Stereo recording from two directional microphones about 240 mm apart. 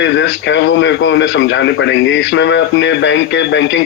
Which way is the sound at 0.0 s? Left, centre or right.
Left.